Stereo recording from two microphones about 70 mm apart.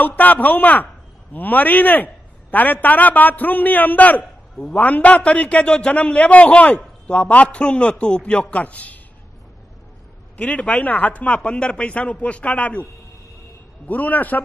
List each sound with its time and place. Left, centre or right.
0.0 s a man's voice: left
10.3 s a man's voice: left
13.8 s a man's voice: left